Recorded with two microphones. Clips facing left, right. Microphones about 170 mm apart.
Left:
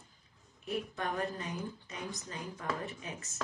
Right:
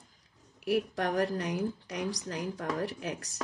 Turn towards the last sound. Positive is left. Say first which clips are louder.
# right 7 dB
turn(degrees=-85)